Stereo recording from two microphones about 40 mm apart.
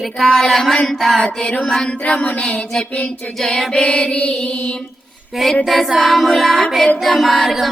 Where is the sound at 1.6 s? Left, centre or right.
Centre.